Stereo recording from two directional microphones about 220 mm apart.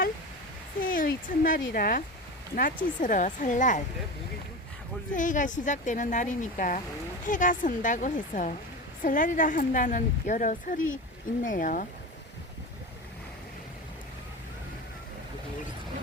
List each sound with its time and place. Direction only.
0.8 s speech: 40° left (ahead or behind)
5.1 s speech: 35° left (ahead or behind)